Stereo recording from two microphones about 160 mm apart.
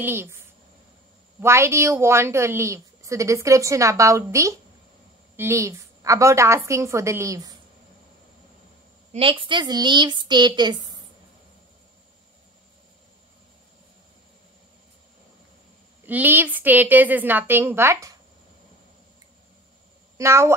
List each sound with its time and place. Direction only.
0.0 s a woman's voice: 15° right (ahead or behind)
1.4 s a woman's voice: 15° right (ahead or behind)
9.1 s a woman's voice: 35° right (ahead or behind)
16.1 s a woman's voice: 10° right (ahead or behind)
20.2 s a woman's voice: 15° right (ahead or behind)